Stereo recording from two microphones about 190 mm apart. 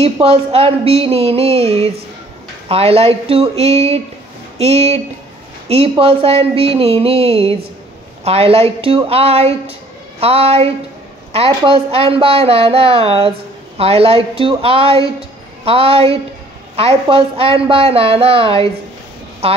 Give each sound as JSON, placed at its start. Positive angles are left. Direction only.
{"t": 0.0, "sound": "a woman's voice", "side_deg": -30}